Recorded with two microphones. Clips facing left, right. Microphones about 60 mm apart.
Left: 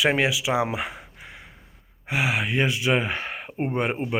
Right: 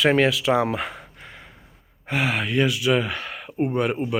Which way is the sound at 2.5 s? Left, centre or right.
Left.